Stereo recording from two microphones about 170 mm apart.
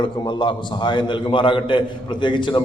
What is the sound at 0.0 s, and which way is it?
A man's voice, 30° left (ahead or behind).